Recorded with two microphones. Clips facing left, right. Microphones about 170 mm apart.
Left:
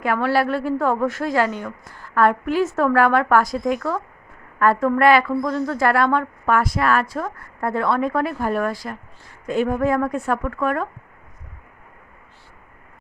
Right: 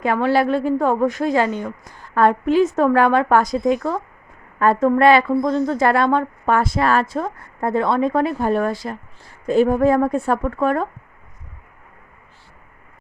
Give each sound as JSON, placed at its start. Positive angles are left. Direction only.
{"t": 0.0, "sound": "a woman's voice", "side_deg": -20}